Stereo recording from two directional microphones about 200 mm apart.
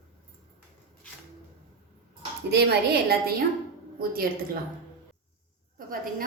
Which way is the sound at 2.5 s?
55° right (ahead or behind).